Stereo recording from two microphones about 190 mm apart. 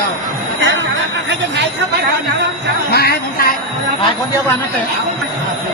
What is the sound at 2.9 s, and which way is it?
Speech, 55° left (ahead or behind).